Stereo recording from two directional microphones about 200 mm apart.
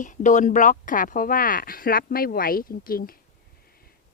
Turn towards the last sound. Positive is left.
turn(degrees=45)  # may be behind; listen again after turning